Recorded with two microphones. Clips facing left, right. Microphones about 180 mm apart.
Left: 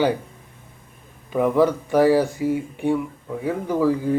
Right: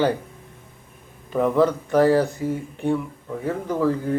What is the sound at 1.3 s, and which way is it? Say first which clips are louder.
Speech: left 1 dB; 10° left (ahead or behind).